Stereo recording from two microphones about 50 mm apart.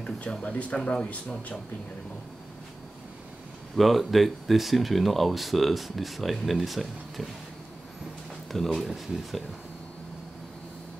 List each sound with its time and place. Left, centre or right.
0.0 s speech: left
3.7 s speech: centre
8.5 s speech: centre